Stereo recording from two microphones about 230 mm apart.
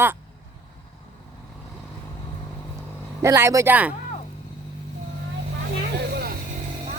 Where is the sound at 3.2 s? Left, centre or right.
Centre.